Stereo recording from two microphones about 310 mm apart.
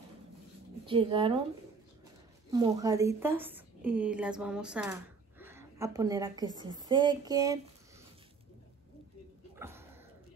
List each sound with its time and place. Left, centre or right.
0.8 s speech: centre
2.5 s a woman's voice: centre
9.6 s a sound: centre